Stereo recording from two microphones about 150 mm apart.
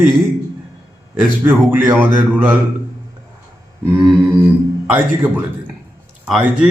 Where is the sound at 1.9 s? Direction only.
10° right (ahead or behind).